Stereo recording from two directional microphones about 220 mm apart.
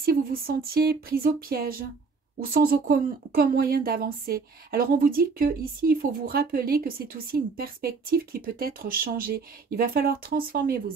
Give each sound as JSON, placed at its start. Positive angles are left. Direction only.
{"t": 0.0, "sound": "speech", "side_deg": -40}